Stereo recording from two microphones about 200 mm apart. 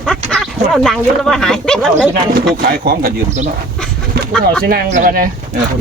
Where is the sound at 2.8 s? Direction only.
50° right (ahead or behind).